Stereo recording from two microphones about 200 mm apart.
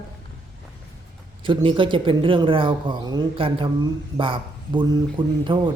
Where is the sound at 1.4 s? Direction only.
25° right (ahead or behind).